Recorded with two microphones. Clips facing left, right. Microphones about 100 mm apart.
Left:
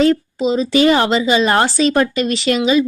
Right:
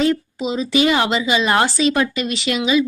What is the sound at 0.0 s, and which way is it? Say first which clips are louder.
Speech: left 5 dB; 35° left (ahead or behind).